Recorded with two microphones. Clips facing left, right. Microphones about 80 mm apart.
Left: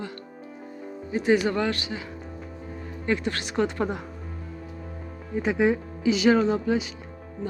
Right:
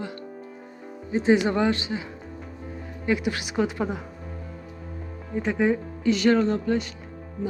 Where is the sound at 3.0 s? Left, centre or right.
Centre.